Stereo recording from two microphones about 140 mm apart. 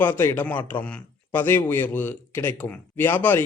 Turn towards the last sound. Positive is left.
turn(degrees=15)  # may be behind; listen again after turning